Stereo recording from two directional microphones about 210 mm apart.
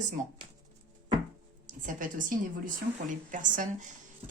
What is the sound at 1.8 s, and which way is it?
A woman's voice, 40° right (ahead or behind).